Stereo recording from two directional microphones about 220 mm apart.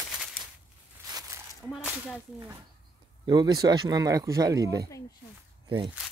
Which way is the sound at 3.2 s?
20° right (ahead or behind).